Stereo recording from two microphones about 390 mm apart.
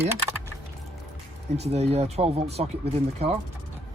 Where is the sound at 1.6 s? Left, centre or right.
Centre.